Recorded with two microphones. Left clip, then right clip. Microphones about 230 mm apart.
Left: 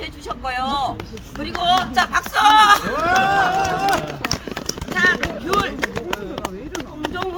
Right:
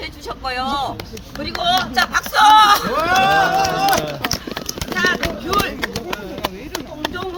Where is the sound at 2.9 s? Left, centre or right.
Right.